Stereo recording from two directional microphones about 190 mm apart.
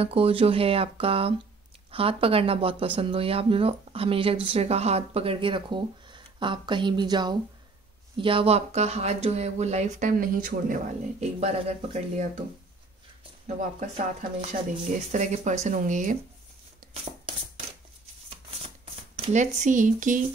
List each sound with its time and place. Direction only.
0.0 s speech: 30° right (ahead or behind)
13.6 s speech: 45° right (ahead or behind)
19.1 s speech: 35° right (ahead or behind)